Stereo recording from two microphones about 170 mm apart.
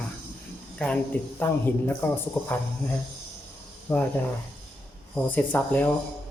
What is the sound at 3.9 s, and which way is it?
Speech, 10° left (ahead or behind).